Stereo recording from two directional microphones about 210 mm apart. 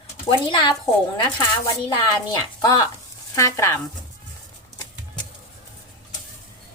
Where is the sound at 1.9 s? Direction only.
20° left (ahead or behind).